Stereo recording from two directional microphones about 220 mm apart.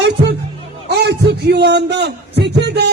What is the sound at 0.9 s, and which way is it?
A man's voice, 50° right (ahead or behind).